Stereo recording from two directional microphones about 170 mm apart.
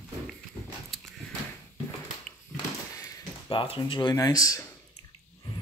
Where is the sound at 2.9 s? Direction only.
20° left (ahead or behind).